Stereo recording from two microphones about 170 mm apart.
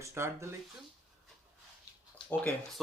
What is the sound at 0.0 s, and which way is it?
Speech, 15° right (ahead or behind).